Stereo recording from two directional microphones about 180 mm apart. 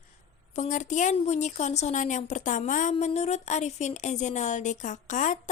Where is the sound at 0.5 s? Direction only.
45° left (ahead or behind).